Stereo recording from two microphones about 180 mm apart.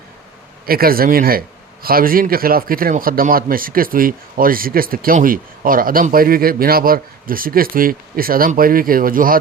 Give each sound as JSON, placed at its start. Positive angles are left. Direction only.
{"t": 0.6, "sound": "a man's voice", "side_deg": -55}